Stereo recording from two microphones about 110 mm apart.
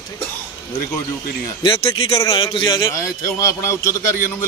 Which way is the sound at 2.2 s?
45° left (ahead or behind).